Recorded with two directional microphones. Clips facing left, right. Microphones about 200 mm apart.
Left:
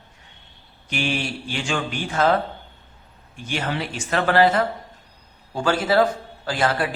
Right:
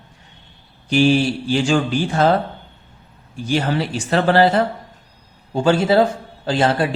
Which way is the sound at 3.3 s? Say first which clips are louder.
Right 7 dB; 35° right (ahead or behind).